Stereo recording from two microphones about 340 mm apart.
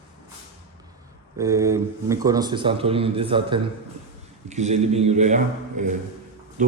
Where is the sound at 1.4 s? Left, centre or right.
Centre.